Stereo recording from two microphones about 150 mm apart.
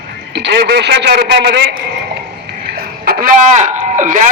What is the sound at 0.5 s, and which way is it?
A man's voice, 90° right.